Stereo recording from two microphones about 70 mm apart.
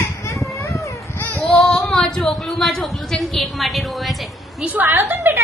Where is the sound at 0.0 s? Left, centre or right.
Left.